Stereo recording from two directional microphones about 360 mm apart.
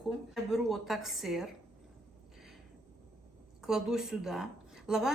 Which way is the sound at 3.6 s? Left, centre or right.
Centre.